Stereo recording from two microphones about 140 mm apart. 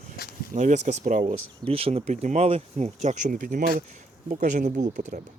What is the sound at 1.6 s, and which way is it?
Speech, 40° right (ahead or behind).